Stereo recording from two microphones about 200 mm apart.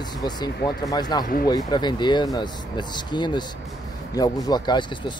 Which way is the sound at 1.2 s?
45° left (ahead or behind).